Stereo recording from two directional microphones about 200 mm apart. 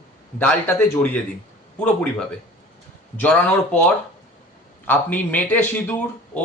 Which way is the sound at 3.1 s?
5° left (ahead or behind).